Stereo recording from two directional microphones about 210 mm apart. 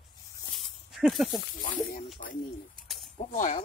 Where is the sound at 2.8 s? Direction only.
Centre (ahead or behind).